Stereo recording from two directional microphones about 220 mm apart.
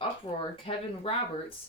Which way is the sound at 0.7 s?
25° left (ahead or behind).